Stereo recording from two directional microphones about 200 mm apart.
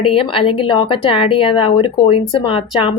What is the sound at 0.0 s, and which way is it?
Speech, 25° left (ahead or behind).